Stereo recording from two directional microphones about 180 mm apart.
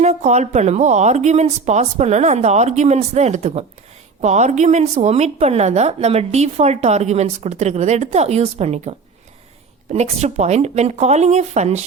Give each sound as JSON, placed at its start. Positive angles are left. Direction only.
{"t": 0.0, "sound": "a woman's voice", "side_deg": -40}